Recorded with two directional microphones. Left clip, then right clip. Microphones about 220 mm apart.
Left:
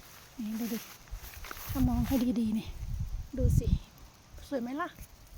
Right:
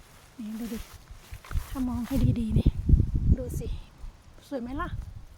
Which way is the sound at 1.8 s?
Centre (ahead or behind).